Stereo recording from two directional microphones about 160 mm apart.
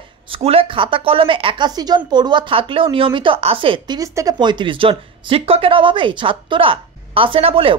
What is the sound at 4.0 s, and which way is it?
Speech, 20° right (ahead or behind).